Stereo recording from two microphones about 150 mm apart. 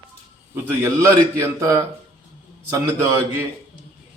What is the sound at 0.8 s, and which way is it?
A man's voice, 20° right (ahead or behind).